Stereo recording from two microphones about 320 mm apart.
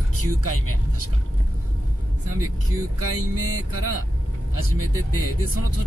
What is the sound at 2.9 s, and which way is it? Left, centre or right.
Vehicle, right.